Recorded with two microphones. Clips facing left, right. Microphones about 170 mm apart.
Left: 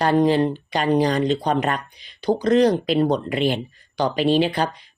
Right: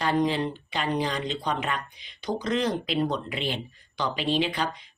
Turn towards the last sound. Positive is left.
turn(degrees=40)  # may be behind; listen again after turning